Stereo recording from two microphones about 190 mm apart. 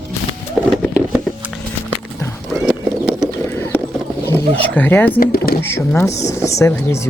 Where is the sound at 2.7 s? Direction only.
Centre (ahead or behind).